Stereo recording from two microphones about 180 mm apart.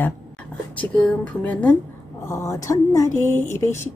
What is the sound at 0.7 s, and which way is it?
Speech, 10° left (ahead or behind).